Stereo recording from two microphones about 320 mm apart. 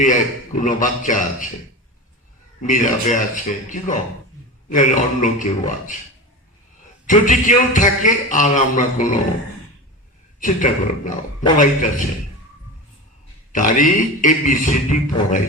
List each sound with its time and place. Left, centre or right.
0.0 s a man's voice: left
2.6 s a man's voice: left
7.1 s a man's voice: left
10.4 s a man's voice: left
13.5 s a man's voice: left